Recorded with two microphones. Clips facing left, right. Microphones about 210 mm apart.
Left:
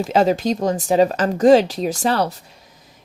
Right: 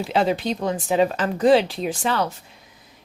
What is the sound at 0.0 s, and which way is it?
Speech, 45° left (ahead or behind).